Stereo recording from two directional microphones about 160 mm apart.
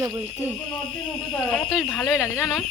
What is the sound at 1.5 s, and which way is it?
Speech, 10° left (ahead or behind).